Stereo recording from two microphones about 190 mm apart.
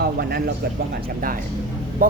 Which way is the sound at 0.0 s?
55° right (ahead or behind).